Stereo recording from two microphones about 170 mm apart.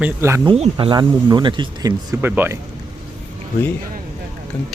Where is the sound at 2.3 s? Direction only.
10° right (ahead or behind).